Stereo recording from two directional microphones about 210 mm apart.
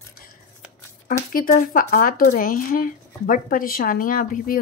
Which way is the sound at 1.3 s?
40° left (ahead or behind).